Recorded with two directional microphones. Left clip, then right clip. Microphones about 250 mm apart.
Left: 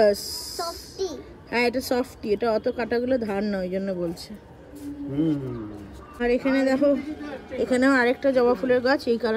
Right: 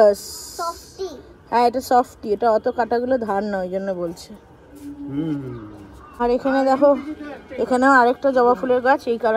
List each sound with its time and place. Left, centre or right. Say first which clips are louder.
0.0 s speech: right 5 dB; centre
0.6 s child singing: right 4 dB; centre
1.5 s speech: right 7 dB; centre
5.1 s speech: left 1 dB; right
6.6 s speech: right 6 dB; centre